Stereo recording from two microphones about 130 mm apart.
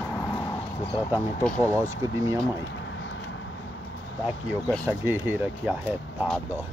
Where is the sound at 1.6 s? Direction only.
25° right (ahead or behind).